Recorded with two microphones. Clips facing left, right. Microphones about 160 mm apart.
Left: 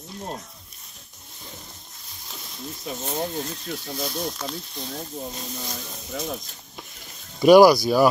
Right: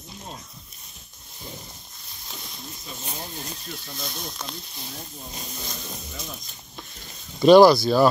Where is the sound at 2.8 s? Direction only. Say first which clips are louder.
Left 10 dB; 80° left.